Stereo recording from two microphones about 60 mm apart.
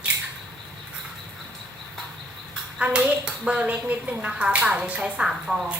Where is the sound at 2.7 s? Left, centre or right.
Centre.